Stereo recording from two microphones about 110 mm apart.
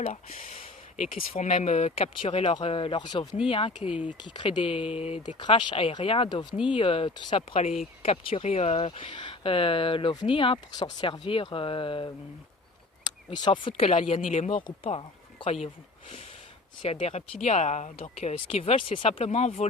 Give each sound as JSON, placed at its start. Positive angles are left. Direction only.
{"t": 0.0, "sound": "speech", "side_deg": 90}
{"t": 2.6, "sound": "speech", "side_deg": 55}
{"t": 3.8, "sound": "speech", "side_deg": -10}
{"t": 4.2, "sound": "speech", "side_deg": 45}
{"t": 5.2, "sound": "speech", "side_deg": 45}
{"t": 6.7, "sound": "speech", "side_deg": 55}
{"t": 7.3, "sound": "speech", "side_deg": 65}
{"t": 13.3, "sound": "speech", "side_deg": 45}
{"t": 17.4, "sound": "speech", "side_deg": 90}